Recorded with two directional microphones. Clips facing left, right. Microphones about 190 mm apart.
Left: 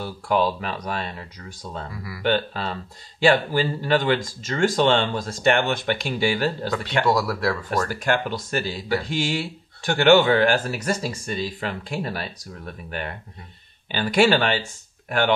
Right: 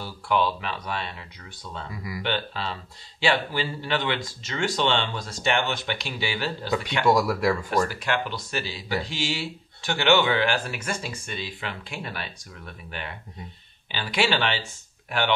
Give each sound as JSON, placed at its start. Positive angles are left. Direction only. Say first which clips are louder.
{"t": 0.0, "sound": "speech", "louder": "left 3 dB", "side_deg": 40}
{"t": 2.2, "sound": "speech", "louder": "left 7 dB", "side_deg": 45}
{"t": 7.1, "sound": "speech", "louder": "right 3 dB", "side_deg": -10}
{"t": 7.9, "sound": "speech", "louder": "left 5 dB", "side_deg": 45}